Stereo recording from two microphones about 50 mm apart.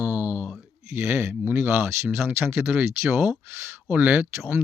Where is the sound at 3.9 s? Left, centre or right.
Right.